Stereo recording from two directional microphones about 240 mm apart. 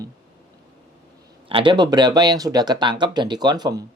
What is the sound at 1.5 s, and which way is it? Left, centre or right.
Speech, right.